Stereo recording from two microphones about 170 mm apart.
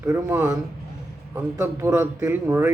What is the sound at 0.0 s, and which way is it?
A man's voice, 15° right (ahead or behind).